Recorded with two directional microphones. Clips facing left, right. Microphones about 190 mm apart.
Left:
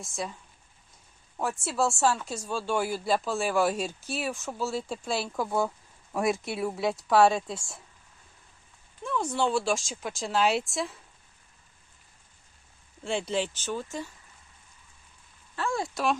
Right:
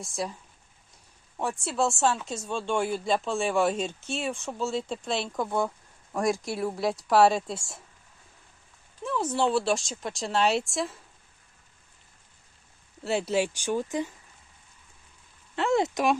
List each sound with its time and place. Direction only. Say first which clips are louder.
0.0 s speech: right 2 dB; centre (ahead or behind)
1.4 s speech: right 1 dB; centre (ahead or behind)
9.2 s speech: right 2 dB; 5° right (ahead or behind)
13.1 s speech: right 3 dB; 5° right (ahead or behind)
15.5 s speech: right 6 dB; 20° right (ahead or behind)